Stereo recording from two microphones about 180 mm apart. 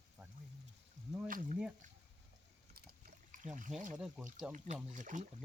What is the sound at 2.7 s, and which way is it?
Pour, 50° right (ahead or behind).